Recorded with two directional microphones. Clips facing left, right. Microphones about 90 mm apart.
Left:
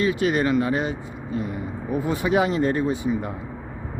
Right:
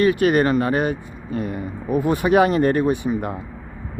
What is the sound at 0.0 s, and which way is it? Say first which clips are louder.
Speech: right 5 dB; 60° right (ahead or behind).